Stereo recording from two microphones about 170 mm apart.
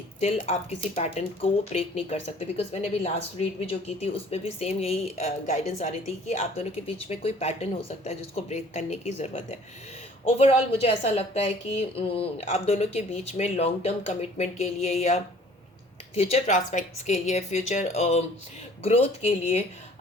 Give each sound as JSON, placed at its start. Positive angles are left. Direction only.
{"t": 0.2, "sound": "speech", "side_deg": 40}